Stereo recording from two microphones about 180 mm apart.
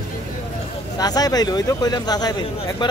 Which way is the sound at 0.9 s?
20° left (ahead or behind).